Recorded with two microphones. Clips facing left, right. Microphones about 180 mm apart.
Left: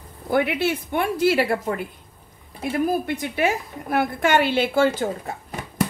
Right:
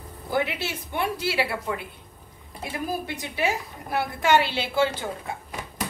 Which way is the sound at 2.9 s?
55° left (ahead or behind).